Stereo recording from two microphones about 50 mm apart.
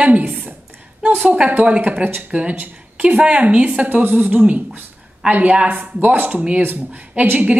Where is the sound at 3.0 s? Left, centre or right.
Right.